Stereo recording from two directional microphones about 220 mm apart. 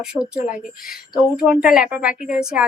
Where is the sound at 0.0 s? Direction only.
5° right (ahead or behind).